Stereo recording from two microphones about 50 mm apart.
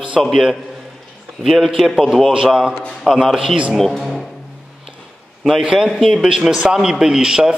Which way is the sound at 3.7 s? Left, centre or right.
Centre.